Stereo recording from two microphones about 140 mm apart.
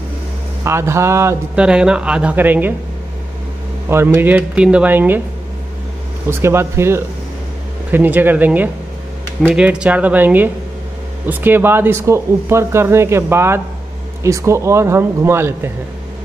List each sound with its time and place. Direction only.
0.7 s speech: 20° right (ahead or behind)
1.5 s speech: 5° right (ahead or behind)
3.9 s speech: 15° right (ahead or behind)
6.4 s speech: 20° right (ahead or behind)